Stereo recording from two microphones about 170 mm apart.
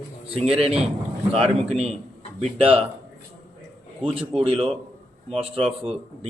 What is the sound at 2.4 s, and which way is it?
Speech, 35° right (ahead or behind).